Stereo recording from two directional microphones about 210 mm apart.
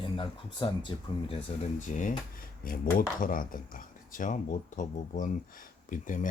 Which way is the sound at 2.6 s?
40° left (ahead or behind).